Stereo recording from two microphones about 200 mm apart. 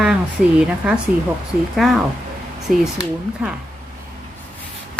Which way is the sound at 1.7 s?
Centre (ahead or behind).